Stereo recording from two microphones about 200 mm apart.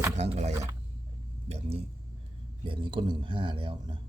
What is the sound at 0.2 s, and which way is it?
A man's voice, 35° right (ahead or behind).